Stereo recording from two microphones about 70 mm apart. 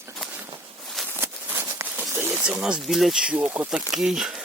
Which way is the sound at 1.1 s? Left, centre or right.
Right.